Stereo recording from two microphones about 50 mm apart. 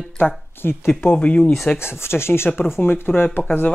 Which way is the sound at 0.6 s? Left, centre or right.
Left.